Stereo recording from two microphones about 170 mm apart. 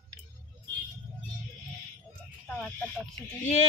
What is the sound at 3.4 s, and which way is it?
Speech, 45° left (ahead or behind).